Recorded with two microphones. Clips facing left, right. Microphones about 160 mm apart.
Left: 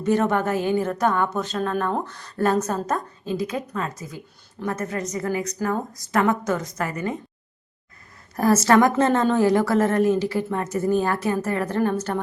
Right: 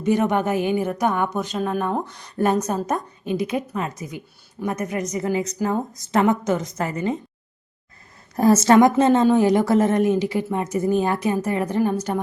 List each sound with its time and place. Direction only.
0.0 s a woman's voice: 15° right (ahead or behind)
8.4 s a woman's voice: 20° right (ahead or behind)